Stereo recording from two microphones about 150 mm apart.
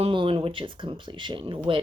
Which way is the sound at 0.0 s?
35° right (ahead or behind).